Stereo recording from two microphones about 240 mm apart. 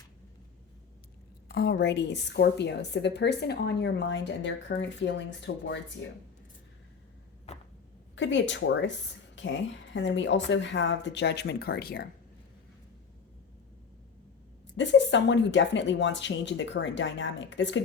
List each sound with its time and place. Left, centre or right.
1.5 s a woman's voice: left
7.5 s a sound: left
8.1 s a woman's voice: left
14.8 s a woman's voice: left